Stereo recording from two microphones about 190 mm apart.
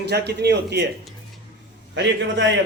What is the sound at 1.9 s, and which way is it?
Speech, 70° right (ahead or behind).